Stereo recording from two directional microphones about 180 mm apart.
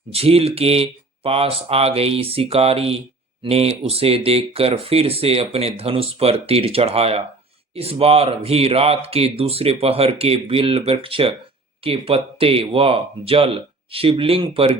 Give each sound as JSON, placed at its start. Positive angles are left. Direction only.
{"t": 0.1, "sound": "speech", "side_deg": -35}